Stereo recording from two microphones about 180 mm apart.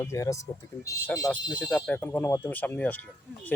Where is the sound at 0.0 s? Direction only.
15° left (ahead or behind).